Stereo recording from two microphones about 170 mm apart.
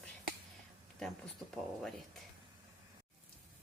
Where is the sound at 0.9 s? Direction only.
5° left (ahead or behind).